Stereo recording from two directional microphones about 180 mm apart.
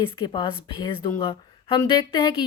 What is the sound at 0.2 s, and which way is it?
A woman's voice, 30° left (ahead or behind).